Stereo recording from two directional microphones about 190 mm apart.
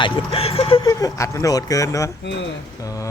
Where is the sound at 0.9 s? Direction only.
15° left (ahead or behind).